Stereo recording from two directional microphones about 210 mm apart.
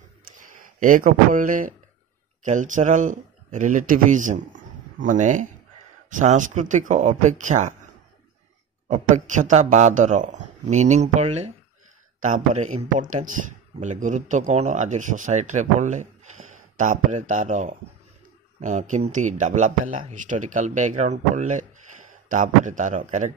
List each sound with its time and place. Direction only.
0.7 s speech: 40° right (ahead or behind)